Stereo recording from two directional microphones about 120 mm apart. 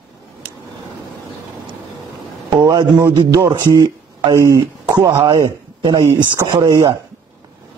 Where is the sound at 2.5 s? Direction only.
35° right (ahead or behind).